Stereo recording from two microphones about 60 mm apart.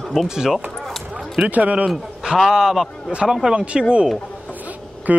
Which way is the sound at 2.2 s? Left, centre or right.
Centre.